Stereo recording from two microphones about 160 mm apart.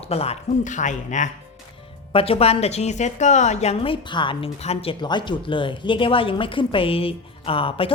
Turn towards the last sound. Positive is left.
turn(degrees=35)  # may be behind; listen again after turning